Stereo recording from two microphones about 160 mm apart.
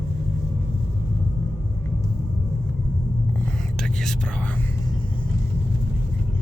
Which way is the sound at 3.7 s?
5° left (ahead or behind).